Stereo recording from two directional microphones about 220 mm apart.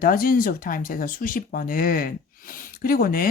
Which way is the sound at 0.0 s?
40° left (ahead or behind).